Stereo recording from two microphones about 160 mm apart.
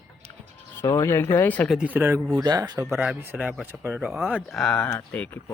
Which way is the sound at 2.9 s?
10° right (ahead or behind).